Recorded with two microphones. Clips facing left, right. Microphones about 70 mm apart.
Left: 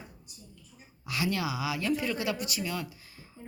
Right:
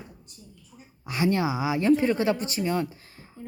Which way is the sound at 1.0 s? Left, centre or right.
Right.